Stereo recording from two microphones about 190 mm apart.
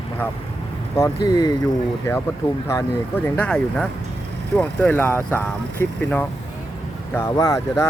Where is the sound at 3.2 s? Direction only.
10° left (ahead or behind).